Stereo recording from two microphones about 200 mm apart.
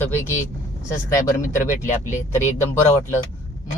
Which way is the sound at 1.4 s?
40° left (ahead or behind).